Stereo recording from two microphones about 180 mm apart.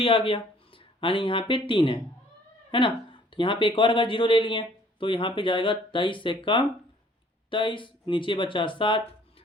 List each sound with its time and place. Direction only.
0.0 s speech: 30° left (ahead or behind)